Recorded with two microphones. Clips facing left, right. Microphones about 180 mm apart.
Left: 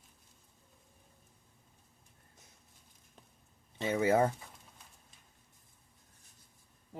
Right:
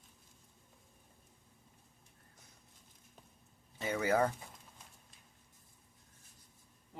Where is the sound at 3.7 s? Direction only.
25° left (ahead or behind).